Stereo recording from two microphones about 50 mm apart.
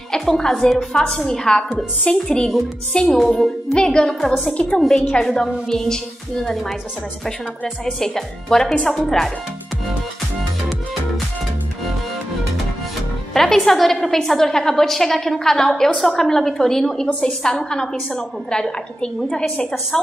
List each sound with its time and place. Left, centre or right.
0.1 s a woman's voice: centre
7.8 s a woman's voice: centre
13.3 s a woman's voice: centre